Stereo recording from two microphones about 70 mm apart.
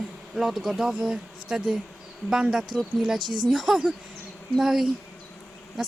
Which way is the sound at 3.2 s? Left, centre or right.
Right.